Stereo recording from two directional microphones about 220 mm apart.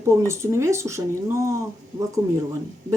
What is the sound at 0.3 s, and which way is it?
Speech, 10° right (ahead or behind).